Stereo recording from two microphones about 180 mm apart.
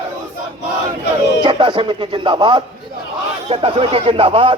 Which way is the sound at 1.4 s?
25° right (ahead or behind).